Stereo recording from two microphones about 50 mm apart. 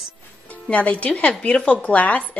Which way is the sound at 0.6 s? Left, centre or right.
Left.